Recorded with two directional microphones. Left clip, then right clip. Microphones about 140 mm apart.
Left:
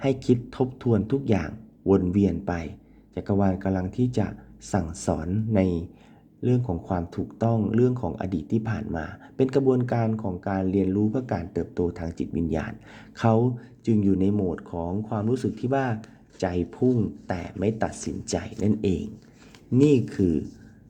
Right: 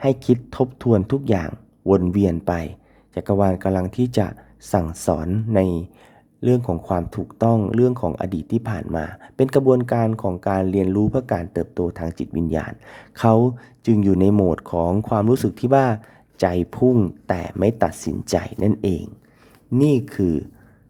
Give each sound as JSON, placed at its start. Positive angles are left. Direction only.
{"t": 0.0, "sound": "speech", "side_deg": -20}
{"t": 6.4, "sound": "speech", "side_deg": -35}
{"t": 10.1, "sound": "speech", "side_deg": -35}